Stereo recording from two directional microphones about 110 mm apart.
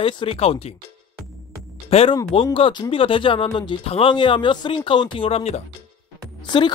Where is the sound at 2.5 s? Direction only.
55° left (ahead or behind); by 5.6 s 75° left (ahead or behind).